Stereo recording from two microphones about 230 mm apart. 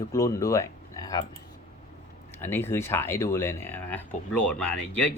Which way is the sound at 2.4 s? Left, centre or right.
Centre.